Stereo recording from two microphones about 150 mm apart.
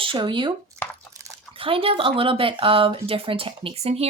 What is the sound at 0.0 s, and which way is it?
Speech, 35° right (ahead or behind).